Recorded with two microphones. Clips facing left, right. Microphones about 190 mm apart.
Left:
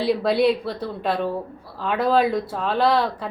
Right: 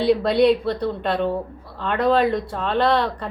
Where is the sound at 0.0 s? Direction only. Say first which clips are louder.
Right 2 dB; 5° left (ahead or behind).